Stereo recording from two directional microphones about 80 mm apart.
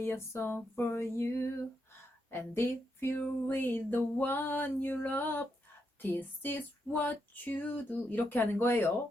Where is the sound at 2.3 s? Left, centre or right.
Left.